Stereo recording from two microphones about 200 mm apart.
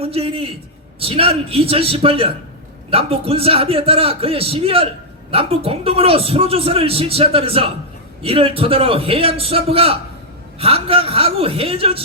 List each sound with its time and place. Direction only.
0.0 s a man's voice: 30° right (ahead or behind)